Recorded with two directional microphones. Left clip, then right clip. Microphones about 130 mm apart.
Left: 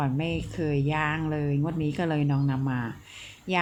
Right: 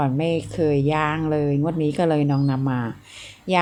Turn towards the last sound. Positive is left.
turn(degrees=-40)  # may be behind; listen again after turning